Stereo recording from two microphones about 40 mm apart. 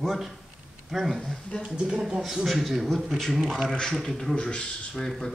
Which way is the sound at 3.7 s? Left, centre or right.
Centre.